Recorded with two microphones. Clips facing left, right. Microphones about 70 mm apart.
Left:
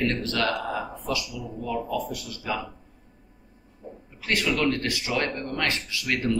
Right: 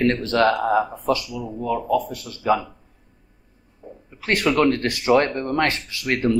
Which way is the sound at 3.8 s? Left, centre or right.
Right.